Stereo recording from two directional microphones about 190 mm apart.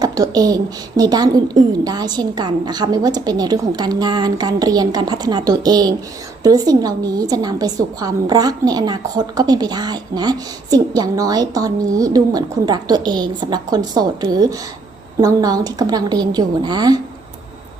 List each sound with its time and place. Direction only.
0.0 s a woman's voice: 20° right (ahead or behind)